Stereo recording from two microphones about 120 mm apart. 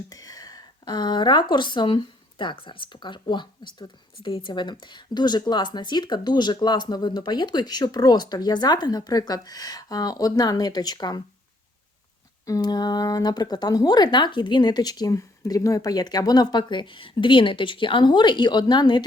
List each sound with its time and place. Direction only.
0.1 s a woman's voice: 30° left (ahead or behind)
12.5 s a woman's voice: 30° left (ahead or behind)